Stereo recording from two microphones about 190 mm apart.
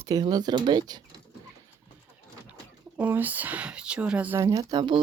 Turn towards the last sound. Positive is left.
turn(degrees=-20)  # may be behind; listen again after turning